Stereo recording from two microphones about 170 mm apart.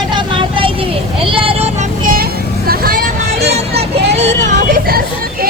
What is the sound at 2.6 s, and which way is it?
Vehicle, 60° right (ahead or behind).